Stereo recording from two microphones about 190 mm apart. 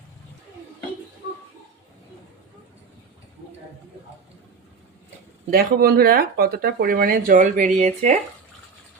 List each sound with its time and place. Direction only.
5.5 s speech: 50° right (ahead or behind)